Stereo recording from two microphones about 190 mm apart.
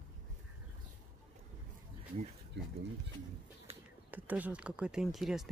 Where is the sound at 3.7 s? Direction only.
35° right (ahead or behind).